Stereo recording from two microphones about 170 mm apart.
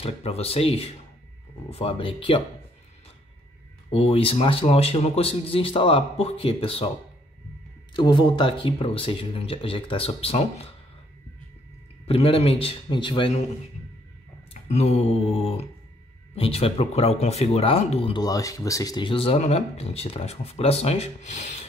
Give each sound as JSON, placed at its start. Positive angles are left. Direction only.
{"t": 0.0, "sound": "speech", "side_deg": 35}
{"t": 3.9, "sound": "speech", "side_deg": 35}
{"t": 7.9, "sound": "speech", "side_deg": 25}
{"t": 12.1, "sound": "speech", "side_deg": 35}
{"t": 14.5, "sound": "speech", "side_deg": 40}
{"t": 18.0, "sound": "speech", "side_deg": 25}